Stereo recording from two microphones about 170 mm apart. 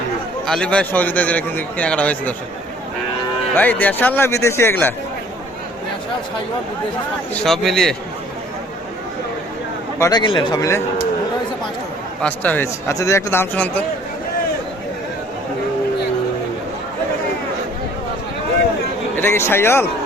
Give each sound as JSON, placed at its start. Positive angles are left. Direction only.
{"t": 0.4, "sound": "a man's voice", "side_deg": 5}
{"t": 3.5, "sound": "a man's voice", "side_deg": 10}
{"t": 7.3, "sound": "speech", "side_deg": 0}
{"t": 10.0, "sound": "speech", "side_deg": 25}
{"t": 12.2, "sound": "a man's voice", "side_deg": 10}
{"t": 19.1, "sound": "a man's voice", "side_deg": 15}